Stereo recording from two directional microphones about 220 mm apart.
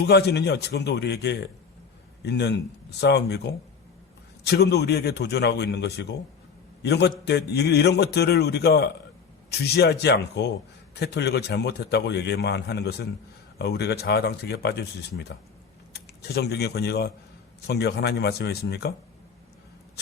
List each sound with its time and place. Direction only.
0.0 s a man's voice: 50° left (ahead or behind)